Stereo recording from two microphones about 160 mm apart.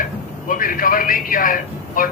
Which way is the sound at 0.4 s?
60° left (ahead or behind).